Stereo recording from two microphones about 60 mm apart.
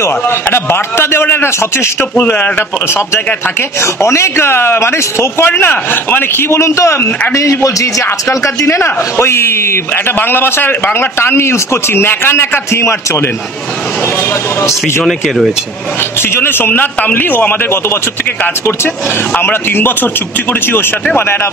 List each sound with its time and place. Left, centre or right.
0.0 s a man's voice: left
3.8 s a man's voice: left
5.5 s a man's voice: left
15.0 s speech: centre
16.2 s a man's voice: left
19.4 s a man's voice: left